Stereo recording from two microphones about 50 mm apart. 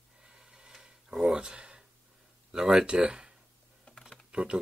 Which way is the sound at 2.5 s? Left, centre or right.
Centre.